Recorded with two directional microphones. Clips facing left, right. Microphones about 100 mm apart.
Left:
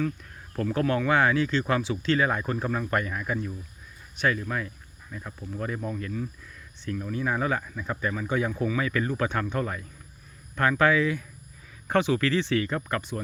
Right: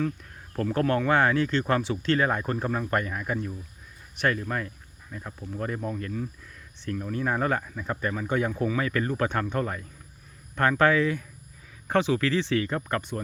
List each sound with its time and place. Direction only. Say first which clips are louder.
0.5 s speech: right 1 dB; 40° right (ahead or behind)
2.6 s speech: even; 30° right (ahead or behind)
4.4 s speech: even; 45° right (ahead or behind)
6.9 s speech: right 1 dB; 50° right (ahead or behind)
7.6 s speech: even; 40° right (ahead or behind)
11.9 s speech: even; 5° left (ahead or behind)
12.1 s speech: even; 5° right (ahead or behind)
12.6 s speech: right 1 dB; 30° right (ahead or behind)